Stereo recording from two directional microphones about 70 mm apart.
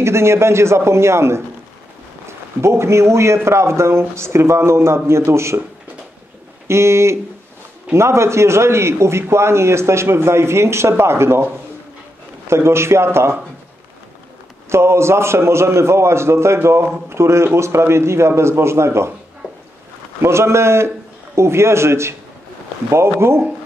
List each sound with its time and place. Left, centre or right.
0.0 s a man's voice: right
6.7 s a man's voice: right
14.7 s a man's voice: right
20.2 s a man's voice: right